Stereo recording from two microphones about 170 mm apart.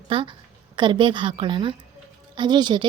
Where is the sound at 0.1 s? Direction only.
30° right (ahead or behind).